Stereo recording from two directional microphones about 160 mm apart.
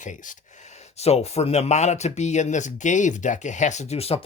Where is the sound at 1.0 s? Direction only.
40° left (ahead or behind).